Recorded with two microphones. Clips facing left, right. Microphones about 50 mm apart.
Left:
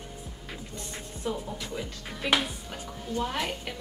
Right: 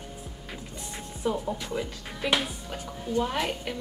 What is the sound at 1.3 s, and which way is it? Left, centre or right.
Speech, right.